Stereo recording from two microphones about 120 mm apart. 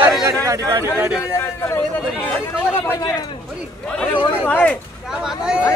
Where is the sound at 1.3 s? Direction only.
20° left (ahead or behind).